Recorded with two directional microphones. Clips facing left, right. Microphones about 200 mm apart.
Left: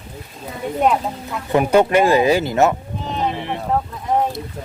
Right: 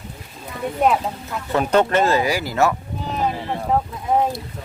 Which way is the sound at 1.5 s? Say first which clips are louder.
Left 3 dB; 10° left (ahead or behind).